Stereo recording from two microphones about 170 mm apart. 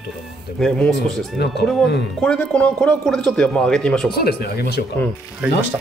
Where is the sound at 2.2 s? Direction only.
5° left (ahead or behind).